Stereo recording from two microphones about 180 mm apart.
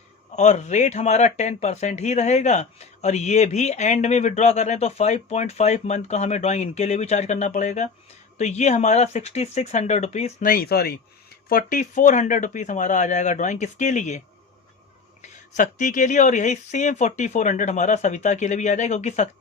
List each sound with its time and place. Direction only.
0.3 s speech: 40° left (ahead or behind)
10.4 s speech: 55° left (ahead or behind)
15.2 s speech: 45° left (ahead or behind)